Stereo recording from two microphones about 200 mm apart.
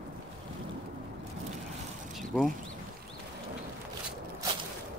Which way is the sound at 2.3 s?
Centre (ahead or behind).